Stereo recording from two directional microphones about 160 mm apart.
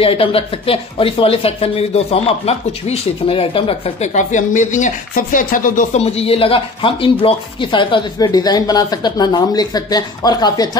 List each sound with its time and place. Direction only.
0.0 s speech: 35° left (ahead or behind)